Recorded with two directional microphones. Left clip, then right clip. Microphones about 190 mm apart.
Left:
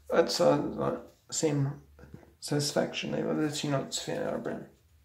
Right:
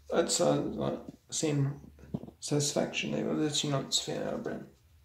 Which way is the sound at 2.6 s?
Centre (ahead or behind).